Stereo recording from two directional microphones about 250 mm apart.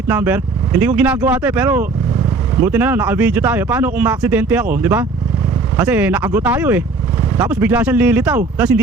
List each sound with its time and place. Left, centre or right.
0.1 s speech: centre